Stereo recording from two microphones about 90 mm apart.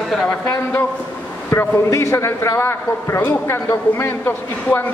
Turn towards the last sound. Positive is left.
turn(degrees=25)  # may be behind; listen again after turning